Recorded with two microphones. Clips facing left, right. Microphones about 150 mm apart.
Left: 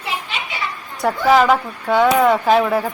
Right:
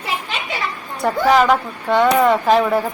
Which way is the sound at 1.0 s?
Centre (ahead or behind).